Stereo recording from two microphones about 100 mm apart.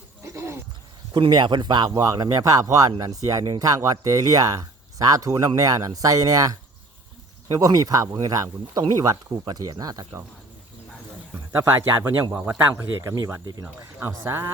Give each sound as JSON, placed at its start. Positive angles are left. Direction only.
{"t": 0.2, "sound": "a sound", "side_deg": -30}
{"t": 1.1, "sound": "speech", "side_deg": -50}
{"t": 7.5, "sound": "speech", "side_deg": -35}
{"t": 11.6, "sound": "speech", "side_deg": -25}
{"t": 13.0, "sound": "speech", "side_deg": -35}
{"t": 14.0, "sound": "speech", "side_deg": -25}